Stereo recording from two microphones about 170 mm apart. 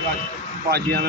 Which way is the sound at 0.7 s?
70° right (ahead or behind).